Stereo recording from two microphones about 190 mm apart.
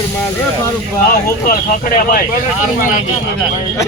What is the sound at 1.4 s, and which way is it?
Speech, 50° left (ahead or behind).